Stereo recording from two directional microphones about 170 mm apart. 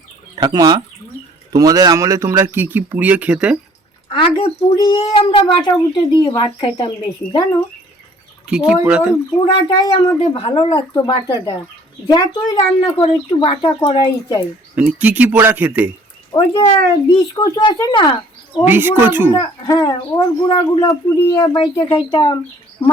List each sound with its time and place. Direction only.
0.4 s speech: 20° right (ahead or behind); by 3.6 s 5° right (ahead or behind)
4.1 s speech: 30° left (ahead or behind)
8.4 s speech: 5° right (ahead or behind)
9.4 s speech: 30° left (ahead or behind)
14.8 s speech: 10° right (ahead or behind)
16.3 s speech: 25° left (ahead or behind)
18.6 s speech: 10° right (ahead or behind)
19.4 s speech: 20° left (ahead or behind)